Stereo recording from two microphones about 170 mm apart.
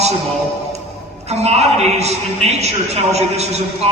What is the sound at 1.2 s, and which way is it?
A man's voice, 40° right (ahead or behind).